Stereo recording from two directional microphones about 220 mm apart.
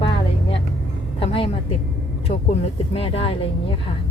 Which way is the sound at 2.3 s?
25° left (ahead or behind).